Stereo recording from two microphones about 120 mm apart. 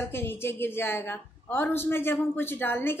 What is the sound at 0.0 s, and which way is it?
A woman's voice, 20° left (ahead or behind).